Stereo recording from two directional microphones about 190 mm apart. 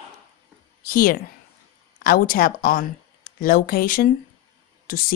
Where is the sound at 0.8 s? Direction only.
50° left (ahead or behind).